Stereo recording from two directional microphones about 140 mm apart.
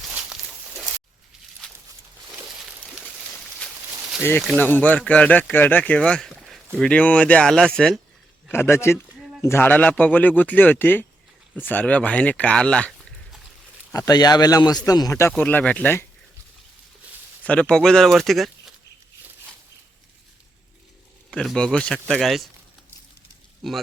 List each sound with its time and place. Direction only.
0.1 s a sound: 5° right (ahead or behind)
2.9 s a sound: 5° right (ahead or behind)
4.2 s speech: 15° left (ahead or behind)
8.4 s speech: 15° left (ahead or behind)
13.9 s speech: 25° left (ahead or behind)
15.3 s speech: 10° left (ahead or behind)
17.4 s speech: 10° left (ahead or behind)
21.2 s speech: 5° left (ahead or behind)
23.6 s speech: centre (ahead or behind)